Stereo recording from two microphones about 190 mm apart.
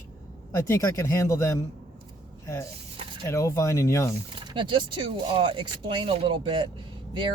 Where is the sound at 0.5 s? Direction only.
15° left (ahead or behind).